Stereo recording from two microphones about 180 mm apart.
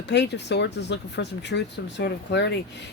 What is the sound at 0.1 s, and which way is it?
Speech, 75° left (ahead or behind).